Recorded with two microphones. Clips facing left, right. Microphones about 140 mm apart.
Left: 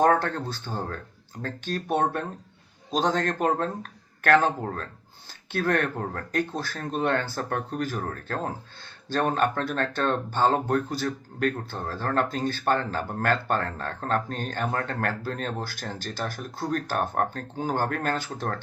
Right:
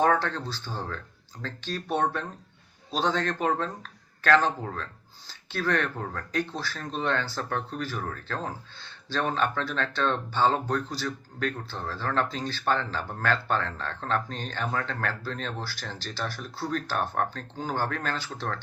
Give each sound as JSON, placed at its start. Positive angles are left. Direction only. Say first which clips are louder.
{"t": 0.0, "sound": "speech", "louder": "left 2 dB", "side_deg": 45}